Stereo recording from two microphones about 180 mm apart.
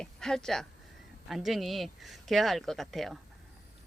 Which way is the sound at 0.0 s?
5° left (ahead or behind).